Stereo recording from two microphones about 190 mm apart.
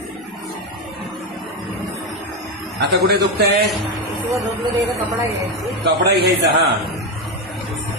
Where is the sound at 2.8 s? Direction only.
60° right (ahead or behind).